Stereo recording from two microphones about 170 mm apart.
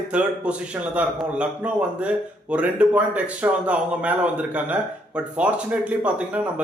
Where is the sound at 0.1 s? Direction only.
5° right (ahead or behind).